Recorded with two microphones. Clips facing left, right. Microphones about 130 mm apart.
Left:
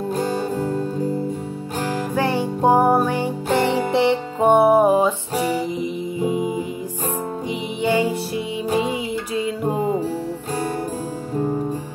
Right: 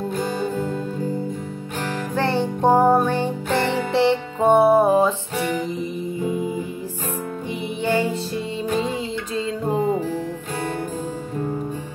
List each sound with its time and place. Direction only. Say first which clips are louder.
0.1 s music: left 4 dB; 40° left (ahead or behind)
1.9 s music: left 1 dB; 10° left (ahead or behind)
7.8 s music: left 2 dB; 15° left (ahead or behind)